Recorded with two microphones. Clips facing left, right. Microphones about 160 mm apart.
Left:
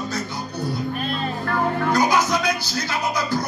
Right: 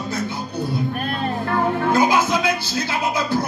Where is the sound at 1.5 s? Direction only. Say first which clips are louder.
Right 2 dB; 25° right (ahead or behind).